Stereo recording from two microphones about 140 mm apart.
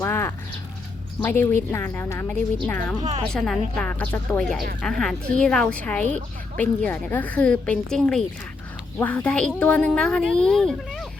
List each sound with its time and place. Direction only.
0.0 s a sound: 15° left (ahead or behind)
1.2 s a woman's voice: 15° left (ahead or behind)
3.3 s a woman's voice: 5° left (ahead or behind)